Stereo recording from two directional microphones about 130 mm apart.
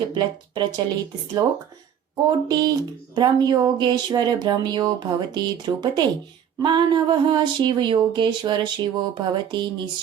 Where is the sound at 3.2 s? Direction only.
30° right (ahead or behind).